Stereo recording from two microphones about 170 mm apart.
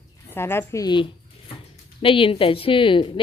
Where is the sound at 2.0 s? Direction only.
30° left (ahead or behind).